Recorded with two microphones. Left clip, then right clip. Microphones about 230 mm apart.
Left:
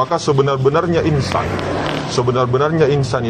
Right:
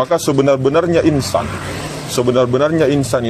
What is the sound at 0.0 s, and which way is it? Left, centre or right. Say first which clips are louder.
A man's voice: right 2 dB; right.